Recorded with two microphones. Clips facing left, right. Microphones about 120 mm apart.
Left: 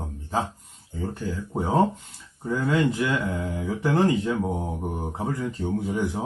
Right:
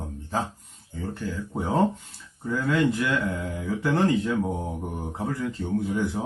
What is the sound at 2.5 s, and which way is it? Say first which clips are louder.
Speech: even; 20° left (ahead or behind).